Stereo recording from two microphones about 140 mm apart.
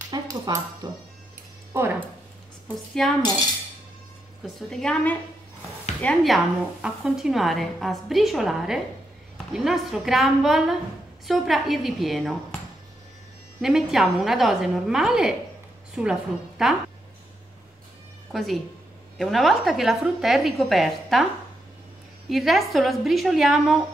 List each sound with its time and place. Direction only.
0.0 s dog: 25° right (ahead or behind)
2.7 s speech: 5° left (ahead or behind)
4.6 s speech: 5° left (ahead or behind)
13.6 s a woman's voice: 5° right (ahead or behind)
18.3 s speech: centre (ahead or behind)
22.3 s speech: centre (ahead or behind)